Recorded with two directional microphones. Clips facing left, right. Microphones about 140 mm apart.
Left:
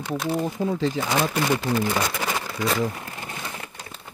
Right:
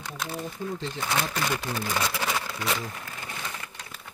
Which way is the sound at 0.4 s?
90° left.